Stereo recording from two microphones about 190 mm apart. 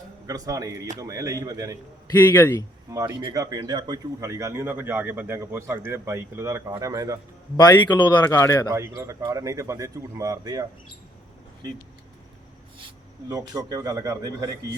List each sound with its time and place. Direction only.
0.3 s speech: 20° right (ahead or behind)
2.4 s speech: 10° left (ahead or behind)
2.9 s speech: 15° right (ahead or behind)
7.5 s speech: 25° left (ahead or behind)
9.0 s speech: 15° right (ahead or behind)
13.2 s speech: 20° right (ahead or behind)